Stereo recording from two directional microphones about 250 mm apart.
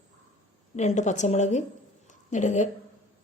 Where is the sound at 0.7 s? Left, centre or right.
Left.